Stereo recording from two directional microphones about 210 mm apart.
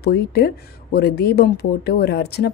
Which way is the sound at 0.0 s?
50° left (ahead or behind).